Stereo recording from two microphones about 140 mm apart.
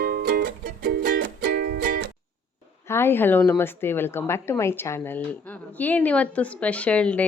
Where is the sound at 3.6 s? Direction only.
15° left (ahead or behind).